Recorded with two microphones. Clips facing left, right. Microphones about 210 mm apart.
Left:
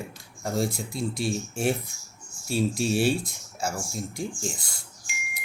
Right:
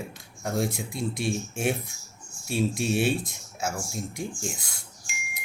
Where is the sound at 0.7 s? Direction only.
25° right (ahead or behind).